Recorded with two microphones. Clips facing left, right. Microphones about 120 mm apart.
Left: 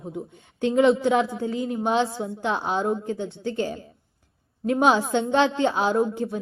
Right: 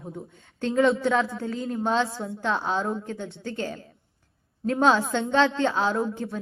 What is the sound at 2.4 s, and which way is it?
Speech, 5° left (ahead or behind).